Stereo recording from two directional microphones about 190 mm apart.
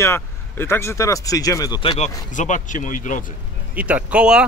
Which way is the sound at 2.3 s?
40° left (ahead or behind).